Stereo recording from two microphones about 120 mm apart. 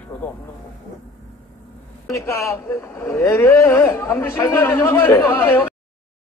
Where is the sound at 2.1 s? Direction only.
25° left (ahead or behind).